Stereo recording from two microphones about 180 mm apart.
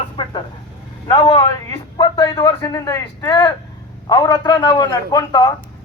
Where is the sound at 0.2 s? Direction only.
30° left (ahead or behind).